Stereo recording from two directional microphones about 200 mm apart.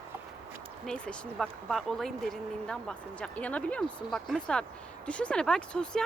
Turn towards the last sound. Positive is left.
turn(degrees=5)  # may be behind; listen again after turning